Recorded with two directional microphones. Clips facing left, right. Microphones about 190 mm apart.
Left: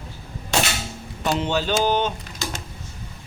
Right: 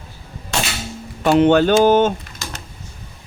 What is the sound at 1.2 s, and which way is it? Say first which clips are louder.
Speech: right 11 dB; 60° right (ahead or behind).